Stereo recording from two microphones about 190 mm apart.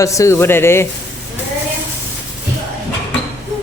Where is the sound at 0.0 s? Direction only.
15° left (ahead or behind).